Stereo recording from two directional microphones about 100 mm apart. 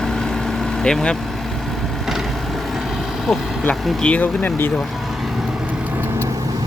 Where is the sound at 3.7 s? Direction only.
5° left (ahead or behind).